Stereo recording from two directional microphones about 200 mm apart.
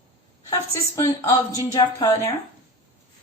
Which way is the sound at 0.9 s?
15° left (ahead or behind).